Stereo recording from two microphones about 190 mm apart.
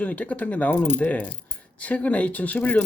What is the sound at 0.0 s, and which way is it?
Speech, 10° left (ahead or behind).